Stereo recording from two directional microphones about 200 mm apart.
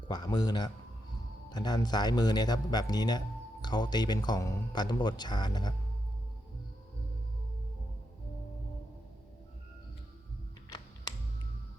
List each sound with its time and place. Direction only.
0.1 s speech: 20° left (ahead or behind)